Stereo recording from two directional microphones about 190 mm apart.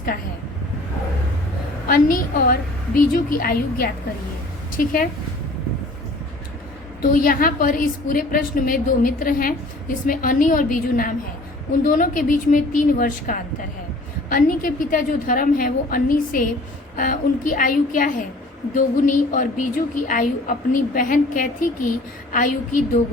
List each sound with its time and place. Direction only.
1.9 s a woman's voice: 50° left (ahead or behind)
7.1 s a woman's voice: 45° left (ahead or behind)